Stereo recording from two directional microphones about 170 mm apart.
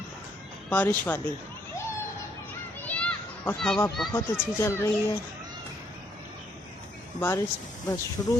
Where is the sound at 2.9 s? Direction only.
10° left (ahead or behind).